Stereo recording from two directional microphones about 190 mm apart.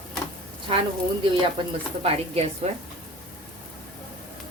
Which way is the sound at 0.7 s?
30° right (ahead or behind).